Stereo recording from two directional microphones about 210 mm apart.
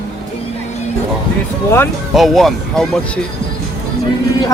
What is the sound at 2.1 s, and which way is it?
Speech, centre (ahead or behind).